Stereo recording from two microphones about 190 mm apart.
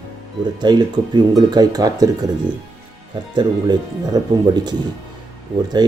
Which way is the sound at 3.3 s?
20° right (ahead or behind).